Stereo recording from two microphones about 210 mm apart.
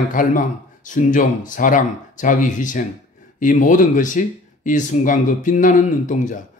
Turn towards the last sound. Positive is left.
turn(degrees=40)  # may be behind; listen again after turning